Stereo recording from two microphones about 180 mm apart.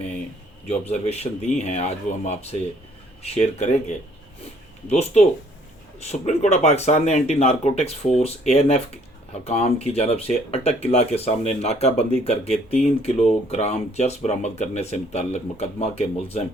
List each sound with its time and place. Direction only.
0.7 s speech: 35° left (ahead or behind)